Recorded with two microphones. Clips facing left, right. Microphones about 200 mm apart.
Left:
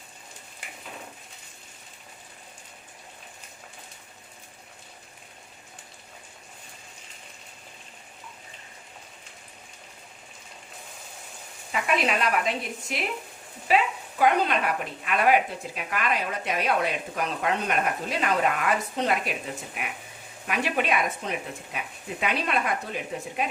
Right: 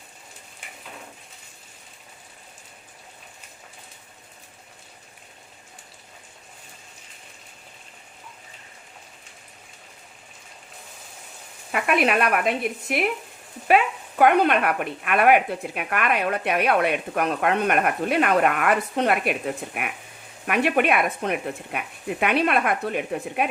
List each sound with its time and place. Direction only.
11.7 s speech: 60° right (ahead or behind)